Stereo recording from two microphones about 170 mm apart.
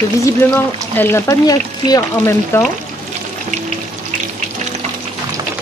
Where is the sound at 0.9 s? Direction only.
15° left (ahead or behind).